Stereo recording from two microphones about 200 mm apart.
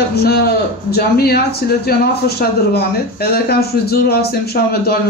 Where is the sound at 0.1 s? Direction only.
50° left (ahead or behind).